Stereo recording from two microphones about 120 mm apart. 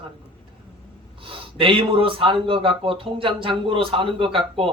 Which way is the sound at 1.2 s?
50° right (ahead or behind).